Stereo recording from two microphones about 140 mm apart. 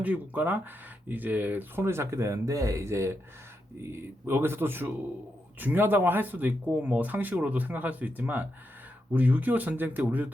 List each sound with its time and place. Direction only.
0.0 s speech: 10° right (ahead or behind)
4.3 s speech: 15° right (ahead or behind)